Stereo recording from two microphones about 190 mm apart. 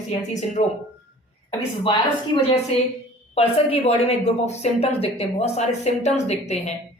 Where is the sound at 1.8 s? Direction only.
30° left (ahead or behind).